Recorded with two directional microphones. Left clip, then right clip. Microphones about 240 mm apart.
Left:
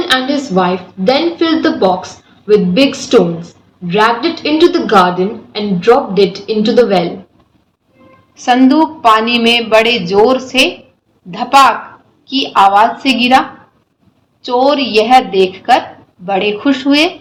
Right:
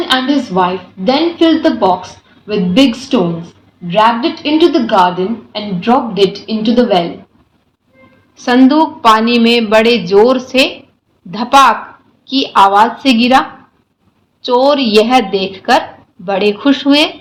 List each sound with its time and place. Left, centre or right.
0.1 s a woman's voice: centre
8.4 s a woman's voice: right
14.4 s a woman's voice: right